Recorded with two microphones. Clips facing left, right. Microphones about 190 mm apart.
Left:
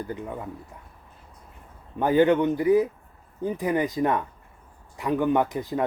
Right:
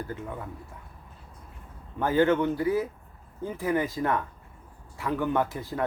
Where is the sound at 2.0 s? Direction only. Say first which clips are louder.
Left 3 dB; 15° left (ahead or behind).